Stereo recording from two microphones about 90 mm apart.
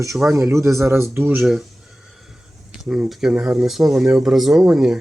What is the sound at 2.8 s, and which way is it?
Speech, 5° right (ahead or behind).